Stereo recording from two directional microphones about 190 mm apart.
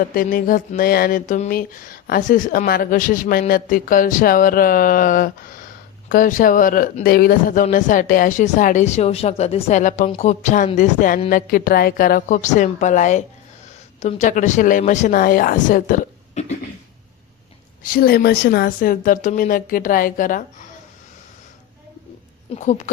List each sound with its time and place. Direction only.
0.0 s speech: 50° left (ahead or behind)
17.8 s speech: 50° left (ahead or behind)
22.5 s speech: 40° left (ahead or behind)